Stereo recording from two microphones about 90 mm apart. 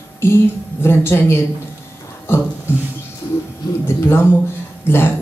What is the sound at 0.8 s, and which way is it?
Speech, 25° left (ahead or behind).